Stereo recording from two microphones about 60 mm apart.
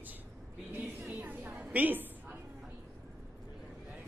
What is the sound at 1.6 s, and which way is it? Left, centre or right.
Speech, right.